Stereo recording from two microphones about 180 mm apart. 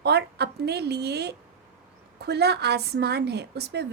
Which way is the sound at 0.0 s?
65° right (ahead or behind).